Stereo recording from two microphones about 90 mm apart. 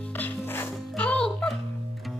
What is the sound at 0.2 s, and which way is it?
Music, 25° left (ahead or behind).